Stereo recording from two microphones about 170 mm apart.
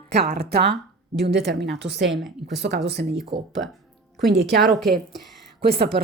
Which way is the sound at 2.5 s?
90° right.